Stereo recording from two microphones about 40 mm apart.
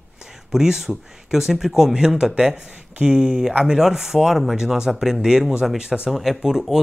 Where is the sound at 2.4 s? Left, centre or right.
Right; by 5.7 s centre.